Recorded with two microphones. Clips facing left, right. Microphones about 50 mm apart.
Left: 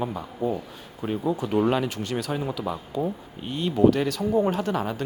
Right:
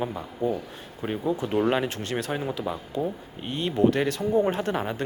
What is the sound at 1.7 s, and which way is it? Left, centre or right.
A man's voice, right.